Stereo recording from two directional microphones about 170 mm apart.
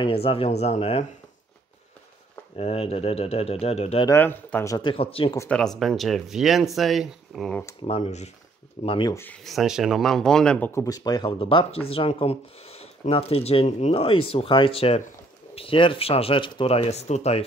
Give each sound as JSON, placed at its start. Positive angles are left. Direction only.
{"t": 0.0, "sound": "speech", "side_deg": 35}
{"t": 2.5, "sound": "speech", "side_deg": 35}
{"t": 4.0, "sound": "speech", "side_deg": 15}
{"t": 4.7, "sound": "speech", "side_deg": 30}
{"t": 5.5, "sound": "speech", "side_deg": 0}
{"t": 7.8, "sound": "speech", "side_deg": 40}
{"t": 8.8, "sound": "speech", "side_deg": 30}
{"t": 9.1, "sound": "speech", "side_deg": 10}
{"t": 9.4, "sound": "speech", "side_deg": 0}